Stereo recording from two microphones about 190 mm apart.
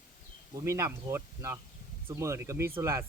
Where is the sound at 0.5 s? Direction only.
15° right (ahead or behind).